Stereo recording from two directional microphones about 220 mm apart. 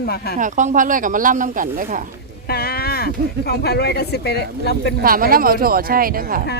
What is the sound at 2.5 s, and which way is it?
Speech, 45° left (ahead or behind).